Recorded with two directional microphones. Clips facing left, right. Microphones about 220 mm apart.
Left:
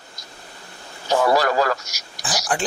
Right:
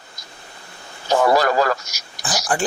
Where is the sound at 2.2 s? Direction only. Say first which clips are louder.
Right 2 dB; centre (ahead or behind).